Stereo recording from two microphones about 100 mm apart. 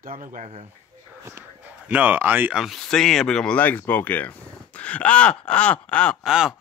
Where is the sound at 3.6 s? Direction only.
15° left (ahead or behind).